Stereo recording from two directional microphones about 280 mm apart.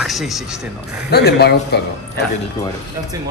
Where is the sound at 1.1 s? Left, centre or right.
Left.